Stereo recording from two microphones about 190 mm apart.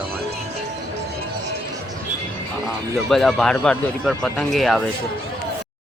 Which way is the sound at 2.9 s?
Centre (ahead or behind).